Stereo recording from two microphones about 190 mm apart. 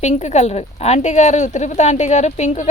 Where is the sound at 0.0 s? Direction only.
35° left (ahead or behind).